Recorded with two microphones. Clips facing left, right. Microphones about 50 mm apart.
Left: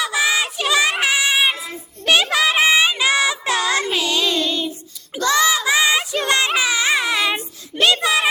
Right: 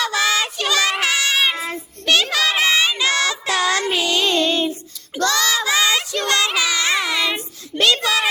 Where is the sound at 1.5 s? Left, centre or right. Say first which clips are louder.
Right 4 dB; right.